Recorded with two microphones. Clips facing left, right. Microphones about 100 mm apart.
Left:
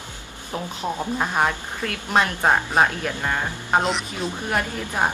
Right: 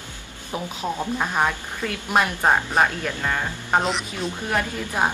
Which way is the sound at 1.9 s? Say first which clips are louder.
Even; 10° right (ahead or behind).